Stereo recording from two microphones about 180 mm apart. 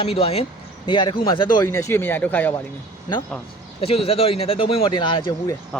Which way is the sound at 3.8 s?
35° left (ahead or behind).